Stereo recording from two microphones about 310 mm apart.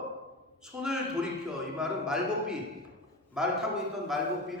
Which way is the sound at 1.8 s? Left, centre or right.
Centre.